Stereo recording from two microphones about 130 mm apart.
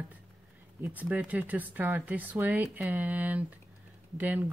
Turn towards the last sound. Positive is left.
turn(degrees=-15)  # may be behind; listen again after turning